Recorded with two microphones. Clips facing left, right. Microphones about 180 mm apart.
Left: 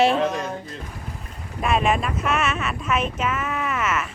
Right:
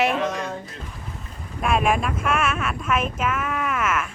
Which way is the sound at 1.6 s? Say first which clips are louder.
Even; centre (ahead or behind).